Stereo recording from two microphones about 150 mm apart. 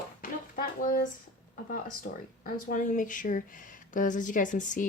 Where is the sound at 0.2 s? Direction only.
70° left (ahead or behind).